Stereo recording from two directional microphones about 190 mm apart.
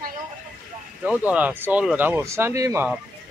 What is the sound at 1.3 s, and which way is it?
Speech, 5° right (ahead or behind).